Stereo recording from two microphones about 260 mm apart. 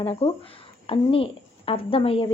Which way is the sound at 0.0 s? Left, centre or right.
Left.